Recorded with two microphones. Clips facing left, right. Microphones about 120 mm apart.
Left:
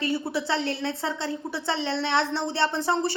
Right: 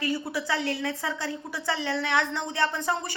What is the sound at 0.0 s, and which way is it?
A woman's voice, 25° left (ahead or behind).